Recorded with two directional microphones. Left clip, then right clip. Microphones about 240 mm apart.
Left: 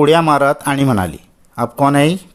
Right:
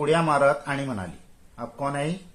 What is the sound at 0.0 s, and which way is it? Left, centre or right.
Speech, left.